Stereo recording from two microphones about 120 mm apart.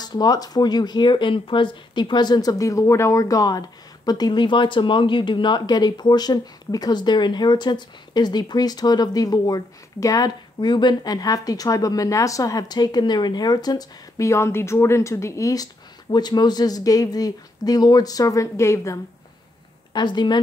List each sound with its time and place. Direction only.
0.0 s speech: 35° left (ahead or behind)
19.9 s speech: 40° left (ahead or behind)